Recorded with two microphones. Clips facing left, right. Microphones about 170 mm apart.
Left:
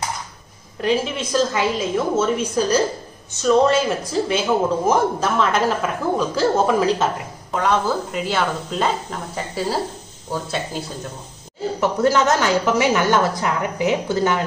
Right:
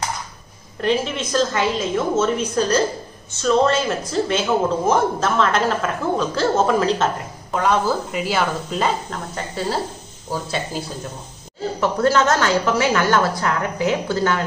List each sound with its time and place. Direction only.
0.7 s a woman's voice: 5° left (ahead or behind)
7.5 s a woman's voice: 5° right (ahead or behind)
10.3 s speech: 5° right (ahead or behind)
11.8 s a woman's voice: 15° left (ahead or behind)